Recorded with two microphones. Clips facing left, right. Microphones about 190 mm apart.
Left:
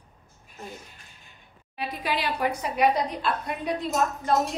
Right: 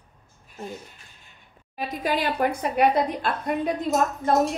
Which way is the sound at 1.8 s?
45° right (ahead or behind).